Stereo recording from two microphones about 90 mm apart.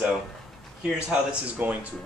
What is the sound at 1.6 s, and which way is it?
Speech, 20° right (ahead or behind).